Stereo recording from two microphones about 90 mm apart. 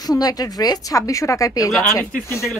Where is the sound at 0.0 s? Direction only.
45° left (ahead or behind).